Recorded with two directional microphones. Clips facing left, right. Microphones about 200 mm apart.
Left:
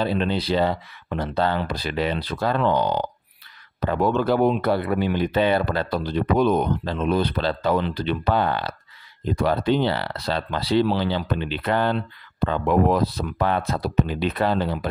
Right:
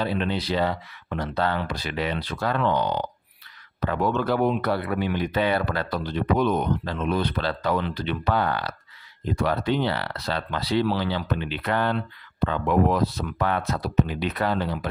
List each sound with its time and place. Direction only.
0.0 s speech: 30° left (ahead or behind)